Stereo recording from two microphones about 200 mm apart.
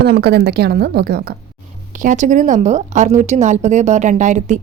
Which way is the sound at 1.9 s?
40° right (ahead or behind).